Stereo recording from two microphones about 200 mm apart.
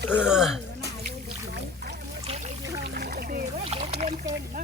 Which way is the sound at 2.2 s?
35° right (ahead or behind).